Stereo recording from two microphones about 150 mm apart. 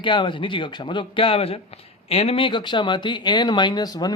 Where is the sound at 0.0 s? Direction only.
35° left (ahead or behind).